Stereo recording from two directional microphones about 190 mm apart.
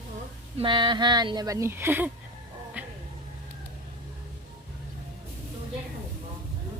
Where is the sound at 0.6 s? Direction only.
25° right (ahead or behind).